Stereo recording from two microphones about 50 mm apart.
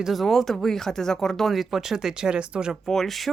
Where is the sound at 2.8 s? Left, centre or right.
Centre.